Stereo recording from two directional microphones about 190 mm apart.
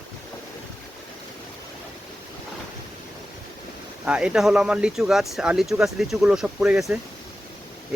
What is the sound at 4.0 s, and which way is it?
Speech, 5° right (ahead or behind).